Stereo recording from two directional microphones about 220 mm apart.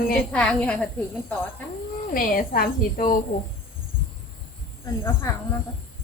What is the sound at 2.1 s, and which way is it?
Speech, 40° left (ahead or behind).